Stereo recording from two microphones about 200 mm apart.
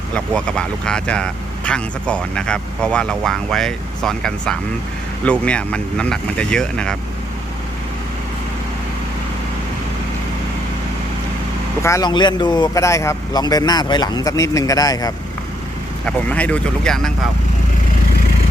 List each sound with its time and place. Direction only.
0.1 s speech: 5° left (ahead or behind)
11.8 s speech: 15° left (ahead or behind)
16.0 s speech: 5° left (ahead or behind)